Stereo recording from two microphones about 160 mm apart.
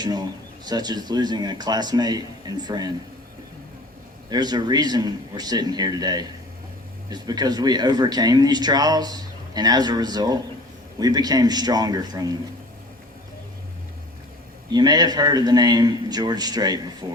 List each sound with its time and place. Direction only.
0.0 s speech: 25° right (ahead or behind)
4.3 s speech: 25° right (ahead or behind)
14.7 s speech: 25° right (ahead or behind)